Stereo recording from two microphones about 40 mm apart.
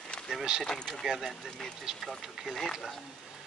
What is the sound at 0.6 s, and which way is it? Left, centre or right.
Speech, centre.